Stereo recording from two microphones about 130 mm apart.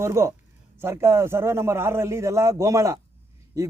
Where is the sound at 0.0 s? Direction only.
20° right (ahead or behind).